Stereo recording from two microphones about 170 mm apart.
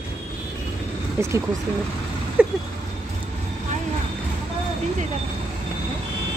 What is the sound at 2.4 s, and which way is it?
Vehicle, 10° right (ahead or behind).